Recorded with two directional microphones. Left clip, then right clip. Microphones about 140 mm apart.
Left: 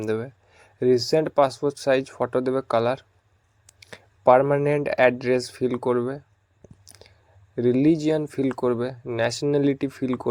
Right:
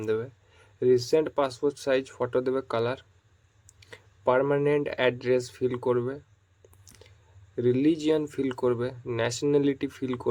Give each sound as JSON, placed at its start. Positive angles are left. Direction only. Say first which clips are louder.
{"t": 0.0, "sound": "speech", "louder": "left 2 dB", "side_deg": 35}
{"t": 6.8, "sound": "chewing", "louder": "left 4 dB", "side_deg": 35}
{"t": 7.5, "sound": "speech", "louder": "left 4 dB", "side_deg": 35}